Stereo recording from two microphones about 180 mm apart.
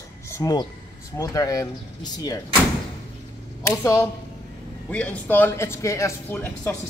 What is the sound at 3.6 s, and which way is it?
Speech, 15° left (ahead or behind).